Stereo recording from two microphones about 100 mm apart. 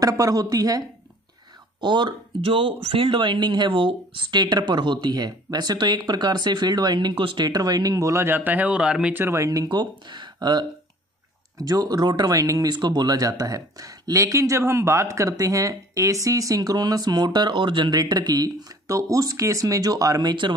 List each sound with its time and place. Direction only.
0.0 s speech: 35° right (ahead or behind)
1.8 s speech: 50° right (ahead or behind)
2.4 s speech: 65° right (ahead or behind); by 9.1 s 10° right (ahead or behind)
9.1 s speech: 25° right (ahead or behind); by 20.5 s 45° right (ahead or behind)